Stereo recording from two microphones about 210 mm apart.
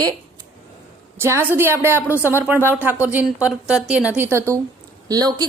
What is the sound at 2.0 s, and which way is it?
Speech, 10° left (ahead or behind).